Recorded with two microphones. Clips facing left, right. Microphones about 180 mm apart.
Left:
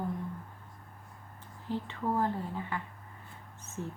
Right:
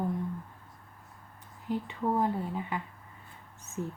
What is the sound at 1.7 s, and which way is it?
Speech, 15° right (ahead or behind).